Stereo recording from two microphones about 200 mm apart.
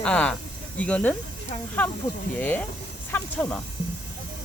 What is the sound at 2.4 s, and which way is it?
Speech, 10° left (ahead or behind).